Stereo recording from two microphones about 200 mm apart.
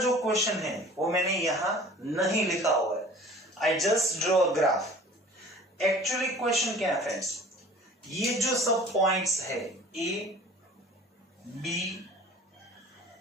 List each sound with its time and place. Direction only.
0.0 s speech: centre (ahead or behind)
0.9 s speech: 15° right (ahead or behind)
1.2 s a woman's voice: centre (ahead or behind)
11.6 s speech: centre (ahead or behind)